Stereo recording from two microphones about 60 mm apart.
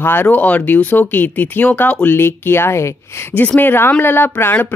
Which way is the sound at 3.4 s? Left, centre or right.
Left.